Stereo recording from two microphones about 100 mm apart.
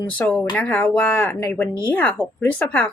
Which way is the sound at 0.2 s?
20° left (ahead or behind).